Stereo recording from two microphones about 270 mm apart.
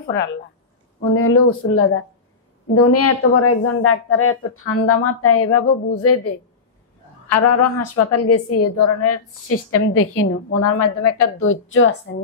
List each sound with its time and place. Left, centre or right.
1.1 s a woman's voice: left
7.2 s a woman's voice: left
11.3 s speech: left